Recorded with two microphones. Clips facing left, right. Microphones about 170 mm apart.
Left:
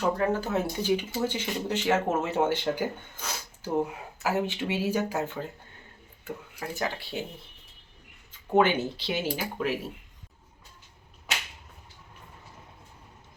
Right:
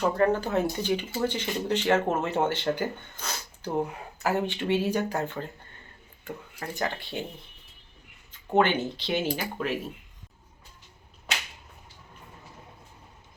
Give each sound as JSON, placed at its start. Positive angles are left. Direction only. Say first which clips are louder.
{"t": 0.2, "sound": "speech", "louder": "right 3 dB", "side_deg": 5}
{"t": 8.3, "sound": "speech", "louder": "left 1 dB", "side_deg": 10}